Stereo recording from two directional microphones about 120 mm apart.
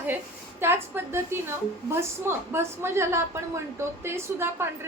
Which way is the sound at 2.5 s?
20° right (ahead or behind).